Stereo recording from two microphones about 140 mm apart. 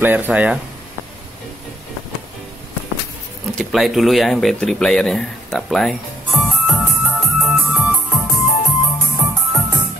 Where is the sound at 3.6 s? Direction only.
Centre (ahead or behind).